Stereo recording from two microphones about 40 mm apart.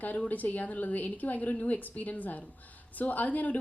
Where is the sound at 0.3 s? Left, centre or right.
Left.